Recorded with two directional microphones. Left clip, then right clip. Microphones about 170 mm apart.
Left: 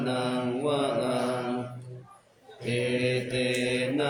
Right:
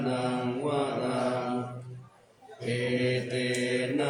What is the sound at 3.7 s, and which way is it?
Mantra, 15° left (ahead or behind).